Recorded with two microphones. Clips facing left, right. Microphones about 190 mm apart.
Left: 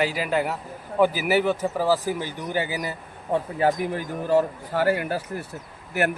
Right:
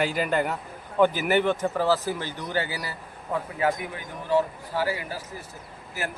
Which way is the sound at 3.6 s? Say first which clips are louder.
Left 3 dB; 30° left (ahead or behind).